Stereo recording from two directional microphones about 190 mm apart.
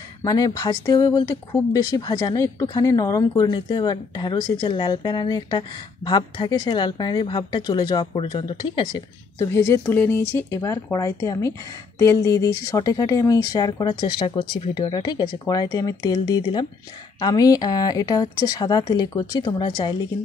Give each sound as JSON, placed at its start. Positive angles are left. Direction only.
{"t": 0.2, "sound": "speech", "side_deg": 20}
{"t": 9.5, "sound": "speech", "side_deg": 10}